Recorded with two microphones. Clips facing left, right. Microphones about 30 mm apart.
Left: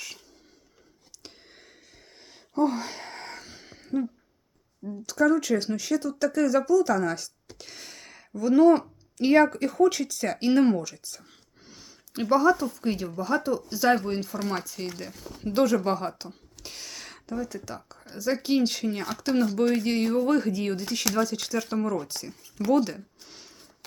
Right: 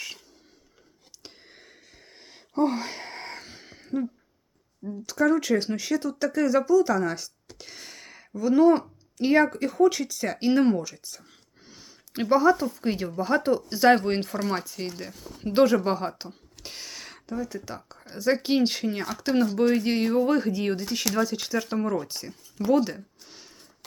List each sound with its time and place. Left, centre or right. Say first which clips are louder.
1.2 s a sound: right 1 dB; centre
2.6 s wail: even; right
3.6 s a sound: right 1 dB; centre
4.8 s speech: left 1 dB; centre
13.1 s speech: right 5 dB; right
14.4 s speech: right 2 dB; right
14.8 s speech: right 1 dB; centre
15.5 s speech: right 3 dB; right
15.8 s speech: right 1 dB; centre
16.6 s a sound: right 1 dB; centre
17.7 s speech: right 1 dB; right; by 23.0 s centre
23.2 s a sound: even; centre